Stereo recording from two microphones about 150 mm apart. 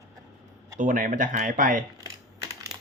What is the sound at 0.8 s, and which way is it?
Speech, 60° right (ahead or behind).